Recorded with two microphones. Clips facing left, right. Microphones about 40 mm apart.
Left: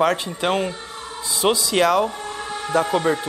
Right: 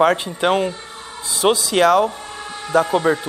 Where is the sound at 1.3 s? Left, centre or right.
Right.